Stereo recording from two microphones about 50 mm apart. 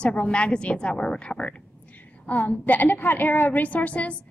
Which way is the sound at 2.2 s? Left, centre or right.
Left.